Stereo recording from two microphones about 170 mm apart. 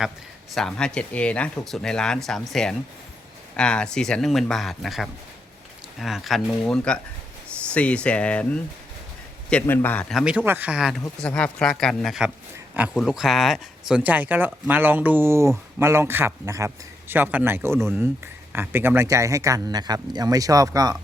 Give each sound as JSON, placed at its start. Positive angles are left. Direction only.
{"t": 0.5, "sound": "speech", "side_deg": 5}
{"t": 9.5, "sound": "speech", "side_deg": 10}